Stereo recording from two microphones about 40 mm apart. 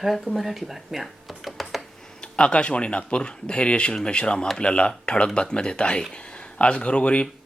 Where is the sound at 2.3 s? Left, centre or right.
Left.